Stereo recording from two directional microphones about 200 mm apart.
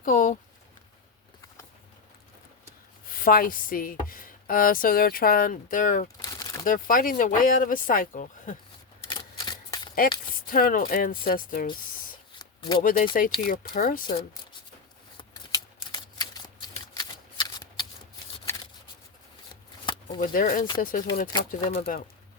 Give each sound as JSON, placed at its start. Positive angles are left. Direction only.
{"t": 0.0, "sound": "speech", "side_deg": 40}
{"t": 3.1, "sound": "speech", "side_deg": 45}
{"t": 6.2, "sound": "crumpling", "side_deg": 15}
{"t": 6.7, "sound": "speech", "side_deg": 45}
{"t": 9.0, "sound": "typewriter", "side_deg": 20}
{"t": 10.4, "sound": "speech", "side_deg": 45}
{"t": 12.4, "sound": "shuffling cards", "side_deg": 20}
{"t": 12.8, "sound": "speech", "side_deg": 45}
{"t": 15.2, "sound": "shuffling cards", "side_deg": 20}
{"t": 19.8, "sound": "shuffling cards", "side_deg": 25}
{"t": 20.1, "sound": "speech", "side_deg": 45}
{"t": 21.2, "sound": "speech", "side_deg": 25}
{"t": 21.8, "sound": "speech", "side_deg": 50}